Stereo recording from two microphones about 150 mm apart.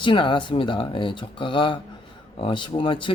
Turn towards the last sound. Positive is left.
turn(degrees=35)  # may be behind; listen again after turning